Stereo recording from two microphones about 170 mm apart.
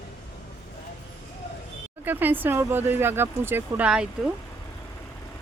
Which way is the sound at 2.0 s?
10° right (ahead or behind).